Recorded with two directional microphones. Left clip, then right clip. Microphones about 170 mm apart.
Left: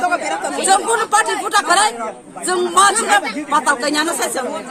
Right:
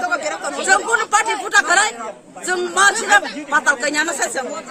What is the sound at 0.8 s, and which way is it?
Speech, centre (ahead or behind).